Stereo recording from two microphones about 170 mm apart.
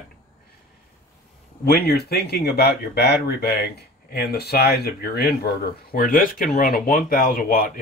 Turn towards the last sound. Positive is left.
turn(degrees=55)  # may be behind; listen again after turning